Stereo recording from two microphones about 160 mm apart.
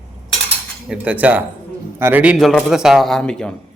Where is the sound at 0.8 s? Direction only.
10° right (ahead or behind).